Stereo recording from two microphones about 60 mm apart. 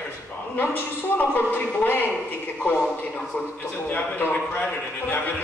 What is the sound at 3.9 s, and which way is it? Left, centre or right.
Speech, left.